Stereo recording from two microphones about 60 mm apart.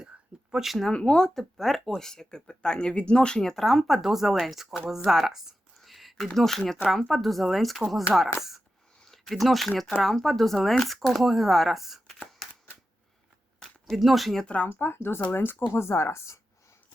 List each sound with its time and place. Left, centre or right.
0.5 s speech: centre
0.9 s speech: centre
4.9 s a sound: centre
6.3 s speech: centre
13.9 s speech: centre
14.4 s speech: centre
14.7 s speech: left